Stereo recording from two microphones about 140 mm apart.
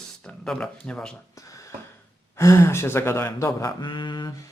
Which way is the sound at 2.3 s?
20° left (ahead or behind).